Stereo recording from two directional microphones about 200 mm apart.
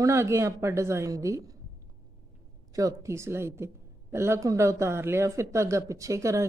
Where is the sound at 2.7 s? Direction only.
15° right (ahead or behind).